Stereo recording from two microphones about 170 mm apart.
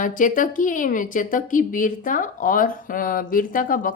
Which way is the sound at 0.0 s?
50° left (ahead or behind).